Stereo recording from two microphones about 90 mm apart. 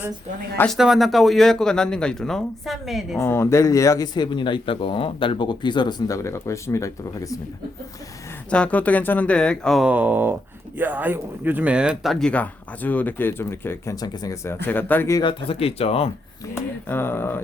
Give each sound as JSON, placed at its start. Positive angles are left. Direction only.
{"t": 0.7, "sound": "speech", "side_deg": 0}
{"t": 3.2, "sound": "speech", "side_deg": 30}
{"t": 6.1, "sound": "speech", "side_deg": 35}
{"t": 8.4, "sound": "speech", "side_deg": 15}
{"t": 9.8, "sound": "speech", "side_deg": -15}
{"t": 12.3, "sound": "speech", "side_deg": 15}
{"t": 13.9, "sound": "speech", "side_deg": 45}
{"t": 14.4, "sound": "speech", "side_deg": 25}
{"t": 15.2, "sound": "speech", "side_deg": 70}
{"t": 16.6, "sound": "speech", "side_deg": 25}